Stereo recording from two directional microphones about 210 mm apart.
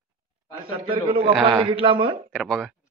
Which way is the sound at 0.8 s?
25° right (ahead or behind).